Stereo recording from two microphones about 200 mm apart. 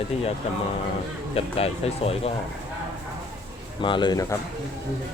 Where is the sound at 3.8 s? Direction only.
25° left (ahead or behind).